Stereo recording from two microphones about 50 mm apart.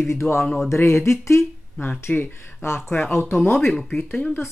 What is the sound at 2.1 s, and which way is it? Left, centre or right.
Speech, left.